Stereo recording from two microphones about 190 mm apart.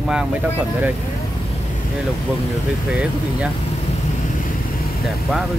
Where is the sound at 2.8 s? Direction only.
5° right (ahead or behind).